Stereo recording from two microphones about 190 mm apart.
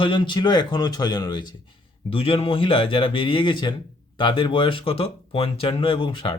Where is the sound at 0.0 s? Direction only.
25° left (ahead or behind).